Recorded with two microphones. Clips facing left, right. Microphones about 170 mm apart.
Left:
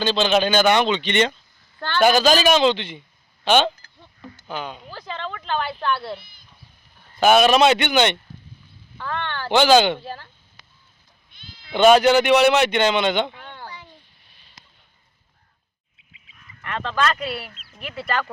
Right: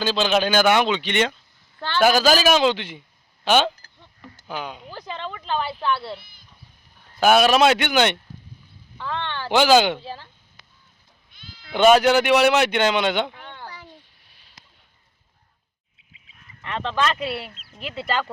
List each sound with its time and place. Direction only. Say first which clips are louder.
0.0 s a woman's voice: left 2 dB; 5° right (ahead or behind)
6.1 s speech: left 2 dB; 20° left (ahead or behind)
7.2 s a woman's voice: left 1 dB; 5° right (ahead or behind)
11.3 s bleat: right 1 dB; 25° left (ahead or behind)
11.7 s a woman's voice: left 1 dB; 5° right (ahead or behind)
13.4 s a sound: left 1 dB; 5° left (ahead or behind)
16.6 s speech: even; 25° right (ahead or behind)